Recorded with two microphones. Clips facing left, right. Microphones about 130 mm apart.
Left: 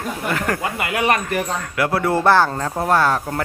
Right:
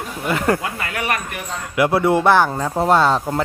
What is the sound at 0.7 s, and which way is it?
Speech, 15° left (ahead or behind).